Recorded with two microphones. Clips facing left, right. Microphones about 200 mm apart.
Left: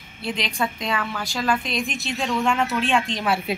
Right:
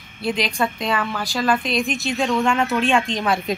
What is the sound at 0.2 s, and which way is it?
Speech, 45° right (ahead or behind).